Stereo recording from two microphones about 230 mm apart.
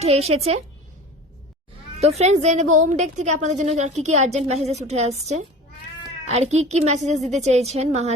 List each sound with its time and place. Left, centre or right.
0.0 s a woman's voice: right
2.0 s a woman's voice: right